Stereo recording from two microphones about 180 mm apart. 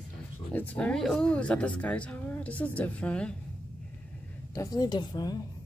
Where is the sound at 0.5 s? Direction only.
5° left (ahead or behind).